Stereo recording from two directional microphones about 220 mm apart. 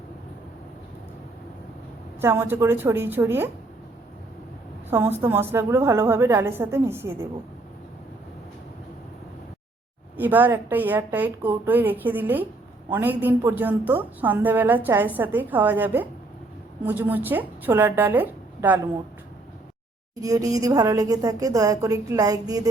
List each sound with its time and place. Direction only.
2.2 s a woman's voice: 10° right (ahead or behind)
4.9 s a woman's voice: 10° right (ahead or behind)
10.2 s a woman's voice: 10° right (ahead or behind)
20.1 s a woman's voice: 15° right (ahead or behind)